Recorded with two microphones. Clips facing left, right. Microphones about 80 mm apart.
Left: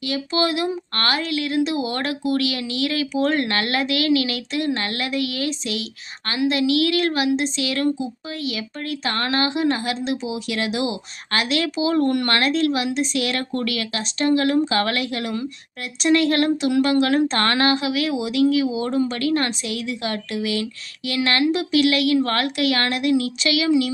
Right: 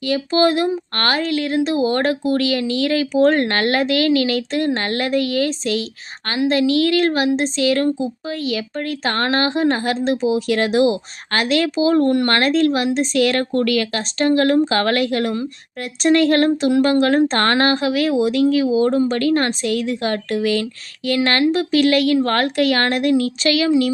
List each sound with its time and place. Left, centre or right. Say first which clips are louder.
0.1 s a woman's voice: right 6 dB; right